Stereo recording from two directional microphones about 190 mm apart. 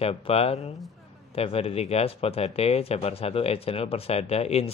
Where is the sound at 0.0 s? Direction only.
30° left (ahead or behind).